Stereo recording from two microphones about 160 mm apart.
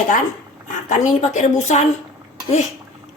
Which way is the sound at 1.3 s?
45° left (ahead or behind).